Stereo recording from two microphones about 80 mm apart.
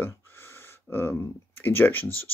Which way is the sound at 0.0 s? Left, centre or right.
Left.